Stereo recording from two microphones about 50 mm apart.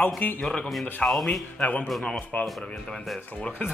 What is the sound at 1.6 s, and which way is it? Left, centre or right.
Speech, left.